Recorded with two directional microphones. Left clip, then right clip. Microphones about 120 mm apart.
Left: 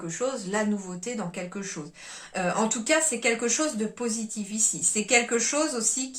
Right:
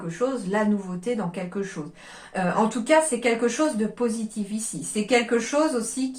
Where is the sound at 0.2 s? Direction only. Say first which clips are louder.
Right 4 dB; 35° left (ahead or behind).